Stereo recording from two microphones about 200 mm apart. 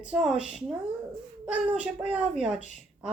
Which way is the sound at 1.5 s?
5° right (ahead or behind).